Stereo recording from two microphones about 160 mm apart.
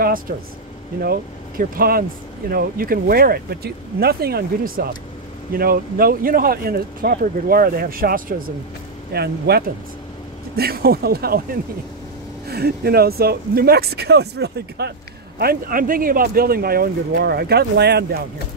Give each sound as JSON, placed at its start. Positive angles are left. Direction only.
{"t": 1.0, "sound": "speech", "side_deg": -70}
{"t": 9.1, "sound": "speech", "side_deg": -80}
{"t": 12.4, "sound": "speech", "side_deg": -80}
{"t": 15.3, "sound": "speech", "side_deg": -65}